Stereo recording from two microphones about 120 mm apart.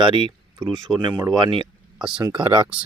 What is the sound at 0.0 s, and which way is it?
Speech, 45° right (ahead or behind).